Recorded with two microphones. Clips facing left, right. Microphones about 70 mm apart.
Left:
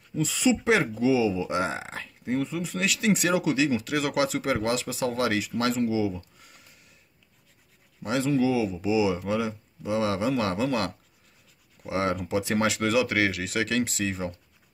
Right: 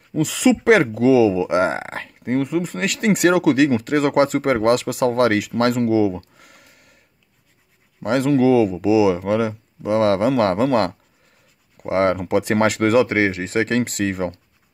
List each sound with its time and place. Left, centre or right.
0.1 s speech: right
8.0 s speech: right